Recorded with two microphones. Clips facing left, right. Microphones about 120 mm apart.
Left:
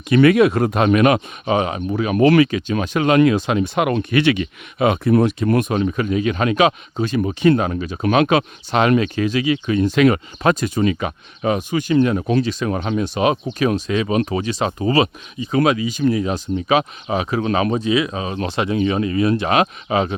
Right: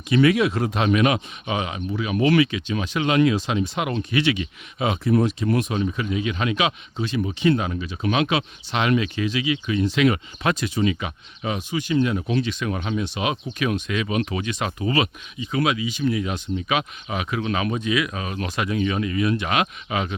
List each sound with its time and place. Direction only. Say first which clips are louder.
0.1 s speech: left 5 dB; 55° left (ahead or behind); by 20.1 s 35° left (ahead or behind)